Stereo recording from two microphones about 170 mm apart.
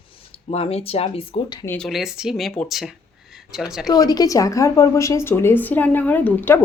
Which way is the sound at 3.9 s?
20° left (ahead or behind).